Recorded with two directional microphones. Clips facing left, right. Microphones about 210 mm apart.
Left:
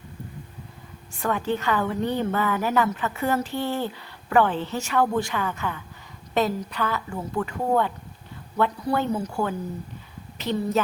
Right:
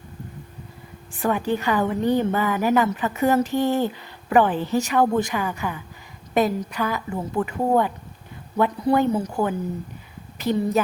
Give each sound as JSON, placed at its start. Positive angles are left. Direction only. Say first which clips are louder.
{"t": 1.1, "sound": "a woman's voice", "louder": "right 3 dB", "side_deg": -15}